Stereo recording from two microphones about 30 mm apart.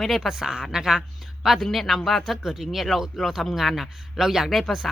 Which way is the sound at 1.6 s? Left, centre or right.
Centre.